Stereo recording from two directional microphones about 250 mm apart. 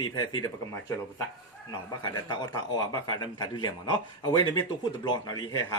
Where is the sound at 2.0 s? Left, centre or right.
Centre.